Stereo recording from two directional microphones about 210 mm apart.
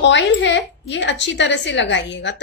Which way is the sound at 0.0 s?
60° left (ahead or behind).